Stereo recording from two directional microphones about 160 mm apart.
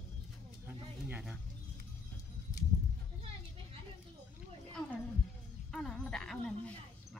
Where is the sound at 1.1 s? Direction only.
10° right (ahead or behind).